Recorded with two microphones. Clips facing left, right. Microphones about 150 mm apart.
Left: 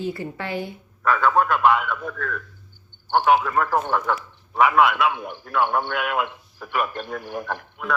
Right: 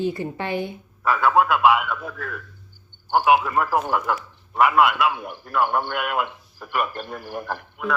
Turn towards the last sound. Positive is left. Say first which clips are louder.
# right 1 dB
turn(degrees=0)  # may be behind; listen again after turning